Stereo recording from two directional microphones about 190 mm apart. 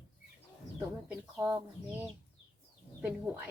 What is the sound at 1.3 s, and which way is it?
Speech, 10° right (ahead or behind).